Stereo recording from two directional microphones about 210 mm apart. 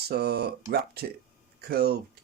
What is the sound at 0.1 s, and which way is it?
Speech, 50° right (ahead or behind).